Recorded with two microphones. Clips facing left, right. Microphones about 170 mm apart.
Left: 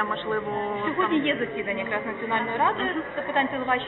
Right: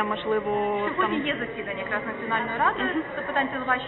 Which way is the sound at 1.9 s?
20° left (ahead or behind).